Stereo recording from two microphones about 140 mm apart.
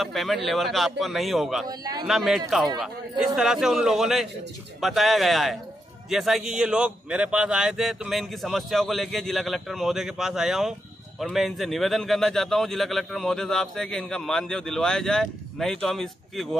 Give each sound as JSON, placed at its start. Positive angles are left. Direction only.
{"t": 0.0, "sound": "a man's voice", "side_deg": 0}
{"t": 1.7, "sound": "a man's voice", "side_deg": -30}
{"t": 2.0, "sound": "a man's voice", "side_deg": 0}